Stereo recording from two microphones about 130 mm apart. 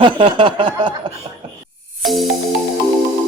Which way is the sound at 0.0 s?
40° right (ahead or behind).